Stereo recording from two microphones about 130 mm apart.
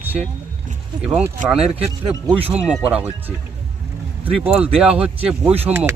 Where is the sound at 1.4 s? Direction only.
75° right (ahead or behind).